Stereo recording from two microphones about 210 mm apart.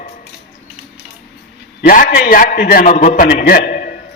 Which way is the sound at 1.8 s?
40° left (ahead or behind).